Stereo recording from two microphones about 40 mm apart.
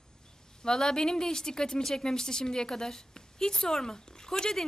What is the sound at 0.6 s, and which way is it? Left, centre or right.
A woman's voice, centre.